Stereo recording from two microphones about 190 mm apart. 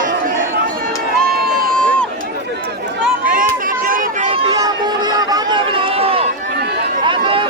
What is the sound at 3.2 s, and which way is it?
Run, 45° right (ahead or behind).